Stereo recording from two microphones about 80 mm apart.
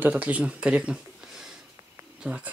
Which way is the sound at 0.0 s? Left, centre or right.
Centre.